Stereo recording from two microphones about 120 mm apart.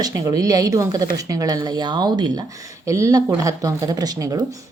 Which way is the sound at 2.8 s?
25° right (ahead or behind).